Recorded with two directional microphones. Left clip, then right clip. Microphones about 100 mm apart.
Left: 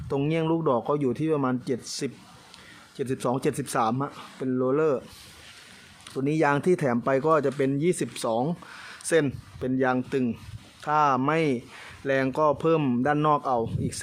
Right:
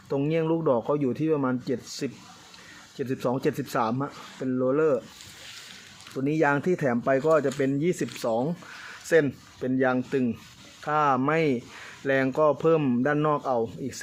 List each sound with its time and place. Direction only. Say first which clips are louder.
0.3 s speech: right 1 dB; 20° left (ahead or behind)
6.1 s speech: even; 25° left (ahead or behind)
13.1 s speech: left 1 dB; 25° left (ahead or behind)